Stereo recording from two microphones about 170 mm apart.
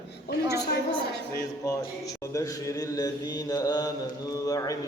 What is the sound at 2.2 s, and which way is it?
Mantra, 20° left (ahead or behind).